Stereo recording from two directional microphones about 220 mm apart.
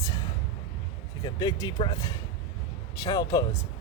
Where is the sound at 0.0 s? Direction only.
15° left (ahead or behind).